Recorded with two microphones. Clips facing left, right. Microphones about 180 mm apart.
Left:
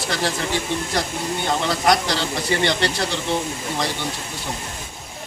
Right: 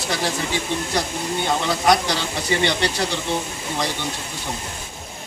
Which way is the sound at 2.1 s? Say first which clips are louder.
Left 1 dB; 15° right (ahead or behind).